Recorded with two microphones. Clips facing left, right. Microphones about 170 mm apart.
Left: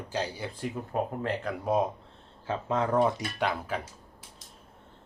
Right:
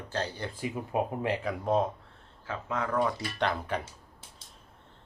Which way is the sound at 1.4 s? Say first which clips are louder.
Left 1 dB; 10° left (ahead or behind).